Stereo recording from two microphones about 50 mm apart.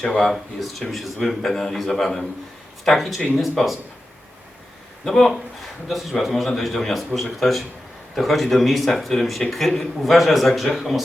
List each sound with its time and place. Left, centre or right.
0.0 s a man's voice: centre
5.0 s a man's voice: centre